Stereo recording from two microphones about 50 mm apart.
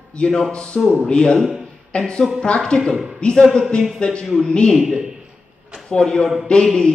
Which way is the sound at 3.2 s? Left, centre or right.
Centre.